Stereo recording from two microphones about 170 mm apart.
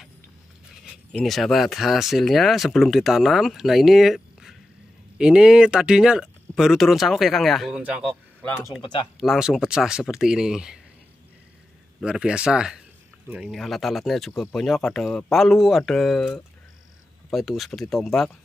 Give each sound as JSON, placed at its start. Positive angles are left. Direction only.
{"t": 1.1, "sound": "speech", "side_deg": 0}
{"t": 12.0, "sound": "speech", "side_deg": -5}